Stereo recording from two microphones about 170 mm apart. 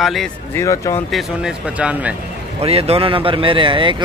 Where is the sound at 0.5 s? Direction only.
20° left (ahead or behind).